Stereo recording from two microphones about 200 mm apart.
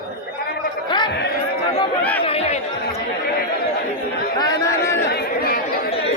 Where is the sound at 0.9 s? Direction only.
20° left (ahead or behind).